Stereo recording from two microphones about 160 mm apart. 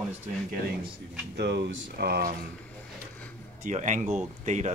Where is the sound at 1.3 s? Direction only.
90° right.